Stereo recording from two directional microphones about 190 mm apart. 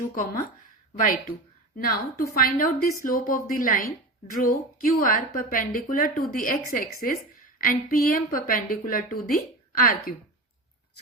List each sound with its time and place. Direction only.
0.1 s a woman's voice: 45° left (ahead or behind)